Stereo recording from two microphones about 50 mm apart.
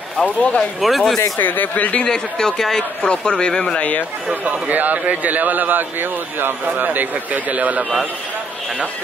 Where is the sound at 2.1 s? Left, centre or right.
Centre.